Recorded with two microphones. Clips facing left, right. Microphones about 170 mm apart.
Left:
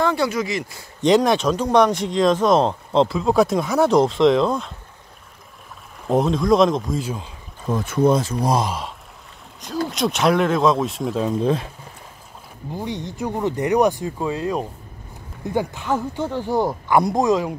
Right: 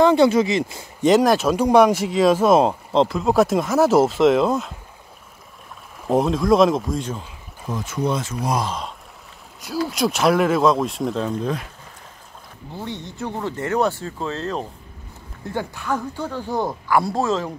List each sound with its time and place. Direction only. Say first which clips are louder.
0.0 s speech: right 6 dB; 25° right (ahead or behind)
1.0 s speech: right 1 dB; centre (ahead or behind)
6.0 s speech: even; centre (ahead or behind)
7.7 s speech: left 6 dB; 55° left (ahead or behind)
8.1 s speech: left 5 dB; 35° left (ahead or behind)
8.6 s speech: left 1 dB; 5° left (ahead or behind)
11.4 s speech: left 5 dB; 25° left (ahead or behind)
12.7 s speech: left 3 dB; 15° left (ahead or behind)